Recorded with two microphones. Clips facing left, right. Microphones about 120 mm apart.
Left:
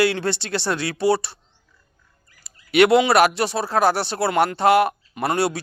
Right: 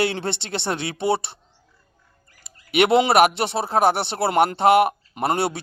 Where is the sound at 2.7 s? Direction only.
20° right (ahead or behind).